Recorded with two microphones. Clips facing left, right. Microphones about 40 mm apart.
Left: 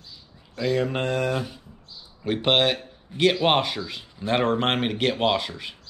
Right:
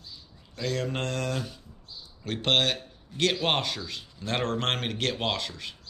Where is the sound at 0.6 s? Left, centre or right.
Centre.